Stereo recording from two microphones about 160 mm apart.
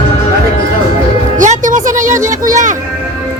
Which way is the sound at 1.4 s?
55° right (ahead or behind).